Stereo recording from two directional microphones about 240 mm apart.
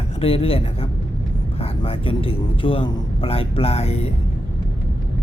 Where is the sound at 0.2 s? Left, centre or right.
Left.